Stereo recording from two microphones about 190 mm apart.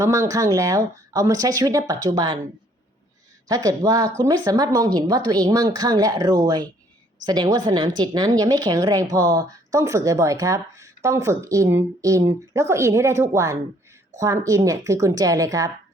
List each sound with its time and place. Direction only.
0.0 s speech: 15° right (ahead or behind)
3.5 s speech: 20° right (ahead or behind)